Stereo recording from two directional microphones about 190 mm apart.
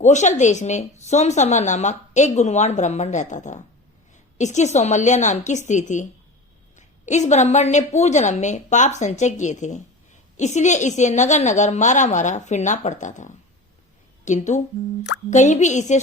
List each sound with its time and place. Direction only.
0.0 s a woman's voice: 40° left (ahead or behind)